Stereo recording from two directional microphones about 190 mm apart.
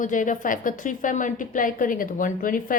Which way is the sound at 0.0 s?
45° left (ahead or behind).